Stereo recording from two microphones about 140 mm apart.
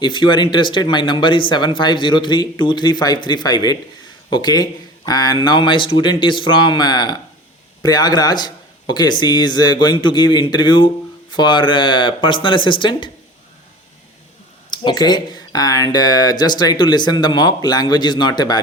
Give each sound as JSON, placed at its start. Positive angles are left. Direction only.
{"t": 0.0, "sound": "a man's voice", "side_deg": 35}
{"t": 14.7, "sound": "speech", "side_deg": 30}